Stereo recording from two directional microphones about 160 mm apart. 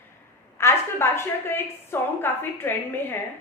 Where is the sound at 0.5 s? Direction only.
15° left (ahead or behind).